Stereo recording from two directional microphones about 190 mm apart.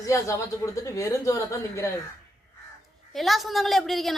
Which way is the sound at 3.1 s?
Centre (ahead or behind).